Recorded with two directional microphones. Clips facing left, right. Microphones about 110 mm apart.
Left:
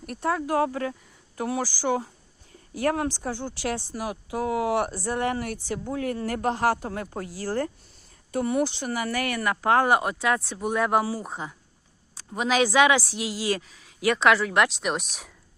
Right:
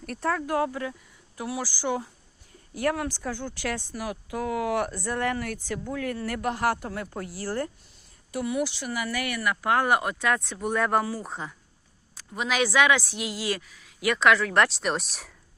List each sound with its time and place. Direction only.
0.2 s speech: 25° left (ahead or behind)
7.4 s speech: 45° left (ahead or behind); by 11.5 s 15° left (ahead or behind)
12.1 s a woman's voice: 25° left (ahead or behind)
14.5 s speech: 5° left (ahead or behind)